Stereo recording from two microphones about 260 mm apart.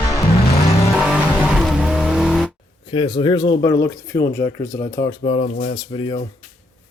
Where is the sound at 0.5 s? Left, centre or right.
Left.